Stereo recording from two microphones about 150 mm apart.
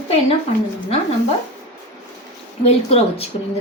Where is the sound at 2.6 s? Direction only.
40° left (ahead or behind).